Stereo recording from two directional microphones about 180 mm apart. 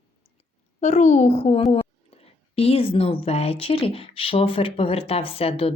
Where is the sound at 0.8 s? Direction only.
40° left (ahead or behind).